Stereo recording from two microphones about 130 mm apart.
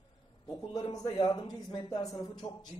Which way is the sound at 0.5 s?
30° left (ahead or behind).